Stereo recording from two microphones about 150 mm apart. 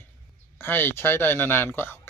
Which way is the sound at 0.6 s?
15° left (ahead or behind).